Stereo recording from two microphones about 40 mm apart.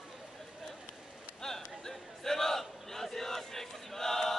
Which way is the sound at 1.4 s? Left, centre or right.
Centre.